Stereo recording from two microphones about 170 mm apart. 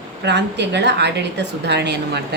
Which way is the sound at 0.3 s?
90° right.